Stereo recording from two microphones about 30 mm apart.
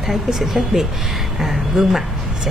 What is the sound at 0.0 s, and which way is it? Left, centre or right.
A woman's voice, centre.